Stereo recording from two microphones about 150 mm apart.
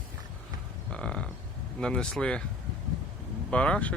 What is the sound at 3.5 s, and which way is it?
Speech, 5° left (ahead or behind).